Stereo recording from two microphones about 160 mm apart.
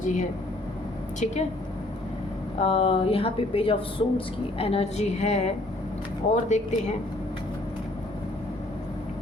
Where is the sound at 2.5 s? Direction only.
40° left (ahead or behind).